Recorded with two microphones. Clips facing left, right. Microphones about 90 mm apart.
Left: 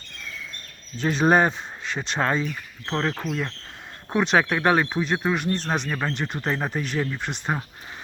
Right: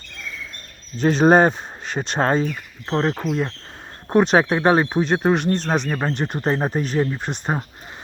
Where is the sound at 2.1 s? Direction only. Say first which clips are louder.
Right 5 dB; 35° right (ahead or behind).